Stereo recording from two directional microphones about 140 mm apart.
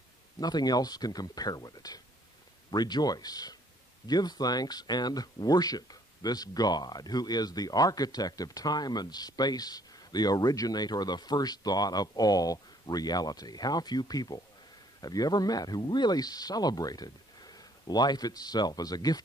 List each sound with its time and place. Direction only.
0.4 s speech: 30° left (ahead or behind)